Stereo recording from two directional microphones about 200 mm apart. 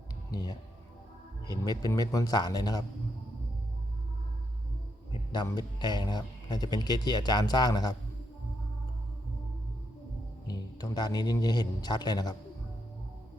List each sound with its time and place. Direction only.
0.3 s speech: 20° left (ahead or behind)
5.1 s speech: 20° left (ahead or behind)
10.4 s speech: 20° left (ahead or behind)